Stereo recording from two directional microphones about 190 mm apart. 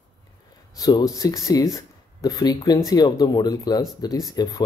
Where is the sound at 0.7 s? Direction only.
20° left (ahead or behind).